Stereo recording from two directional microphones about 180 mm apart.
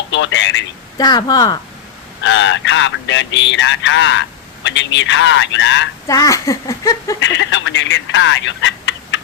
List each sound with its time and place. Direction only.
0.1 s speech: 90° left
0.9 s speech: 20° left (ahead or behind)
2.2 s speech: 90° left
6.1 s speech: 20° left (ahead or behind)
7.2 s speech: 90° left